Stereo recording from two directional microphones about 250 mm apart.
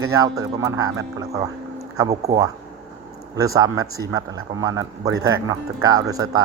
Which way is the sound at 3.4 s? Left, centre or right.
Centre.